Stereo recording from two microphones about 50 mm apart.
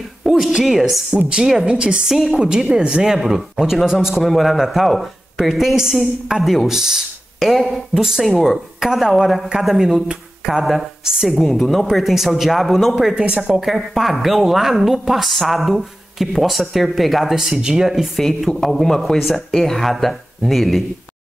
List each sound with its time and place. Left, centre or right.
0.2 s a sound: centre
0.7 s a woman's voice: centre
13.1 s a woman's voice: centre
13.7 s speech: centre
18.6 s speech: centre